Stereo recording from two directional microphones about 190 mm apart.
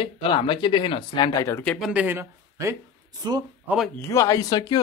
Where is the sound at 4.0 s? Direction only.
15° left (ahead or behind).